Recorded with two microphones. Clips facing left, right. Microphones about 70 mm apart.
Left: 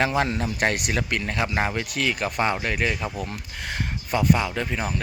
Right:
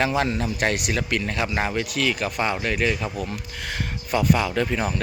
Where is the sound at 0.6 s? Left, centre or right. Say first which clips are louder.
Left 1 dB; left; by 4.6 s centre.